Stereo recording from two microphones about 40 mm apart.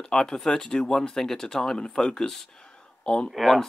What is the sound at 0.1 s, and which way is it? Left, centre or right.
Speech, centre.